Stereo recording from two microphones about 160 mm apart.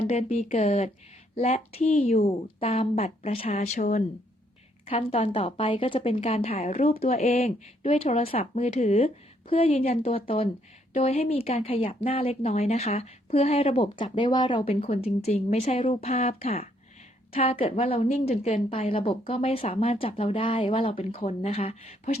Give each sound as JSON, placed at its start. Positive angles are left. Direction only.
{"t": 0.1, "sound": "speech", "side_deg": 40}